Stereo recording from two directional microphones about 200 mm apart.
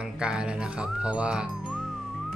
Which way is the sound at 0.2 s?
5° right (ahead or behind).